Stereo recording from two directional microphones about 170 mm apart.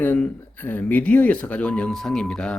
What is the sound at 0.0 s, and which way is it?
Speech, 10° left (ahead or behind).